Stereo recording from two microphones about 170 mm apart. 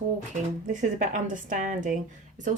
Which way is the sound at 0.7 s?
45° right (ahead or behind).